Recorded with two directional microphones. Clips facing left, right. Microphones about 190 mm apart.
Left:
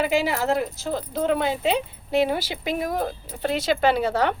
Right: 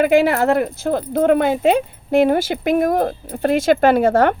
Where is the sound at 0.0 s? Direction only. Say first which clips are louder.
Right 8 dB; 55° right (ahead or behind).